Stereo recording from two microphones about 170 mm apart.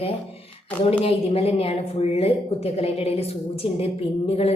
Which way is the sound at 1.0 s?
35° left (ahead or behind).